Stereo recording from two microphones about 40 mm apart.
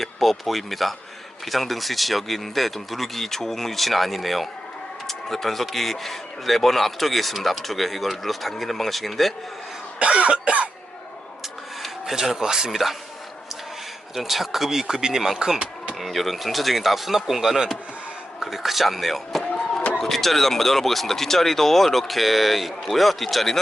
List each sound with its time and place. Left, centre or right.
0.0 s speech: centre
10.0 s cough: right
12.1 s speech: centre
14.2 s speech: centre
16.0 s speech: centre